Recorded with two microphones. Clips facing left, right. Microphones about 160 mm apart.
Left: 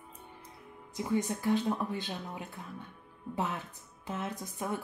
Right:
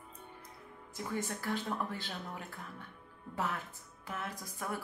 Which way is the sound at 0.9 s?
15° left (ahead or behind).